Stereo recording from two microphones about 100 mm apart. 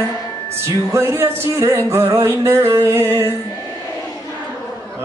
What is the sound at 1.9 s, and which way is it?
A man's voice, 30° right (ahead or behind).